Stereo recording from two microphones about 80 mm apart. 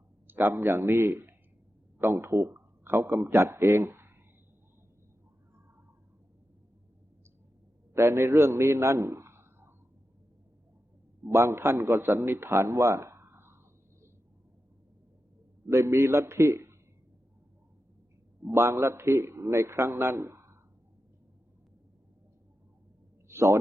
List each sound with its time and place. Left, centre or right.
0.3 s speech: right
3.3 s speech: right
7.9 s a man's voice: right
11.3 s a man's voice: right
15.6 s a man's voice: right
18.4 s a man's voice: right
23.3 s a man's voice: right